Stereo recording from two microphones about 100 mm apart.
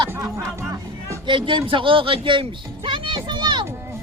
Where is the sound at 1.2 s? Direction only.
55° right (ahead or behind).